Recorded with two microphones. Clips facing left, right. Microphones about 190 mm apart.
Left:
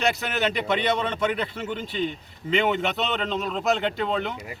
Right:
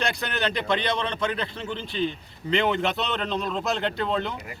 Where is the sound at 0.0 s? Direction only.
5° left (ahead or behind).